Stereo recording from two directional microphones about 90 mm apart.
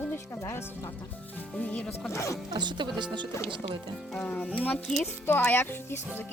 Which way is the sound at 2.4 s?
55° right (ahead or behind).